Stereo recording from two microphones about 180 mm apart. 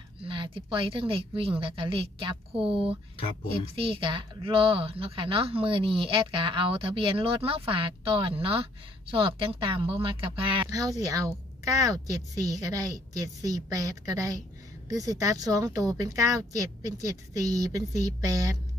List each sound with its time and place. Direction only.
0.2 s a woman's voice: 30° right (ahead or behind)
17.3 s a woman's voice: 20° right (ahead or behind)